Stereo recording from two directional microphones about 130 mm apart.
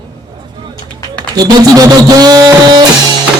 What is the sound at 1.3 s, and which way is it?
A man's voice, 30° right (ahead or behind).